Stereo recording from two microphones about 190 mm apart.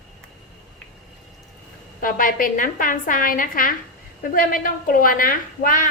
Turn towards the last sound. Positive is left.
turn(degrees=45)  # may be behind; listen again after turning